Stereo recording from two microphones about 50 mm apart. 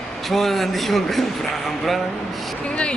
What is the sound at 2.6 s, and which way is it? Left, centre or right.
Speech, left.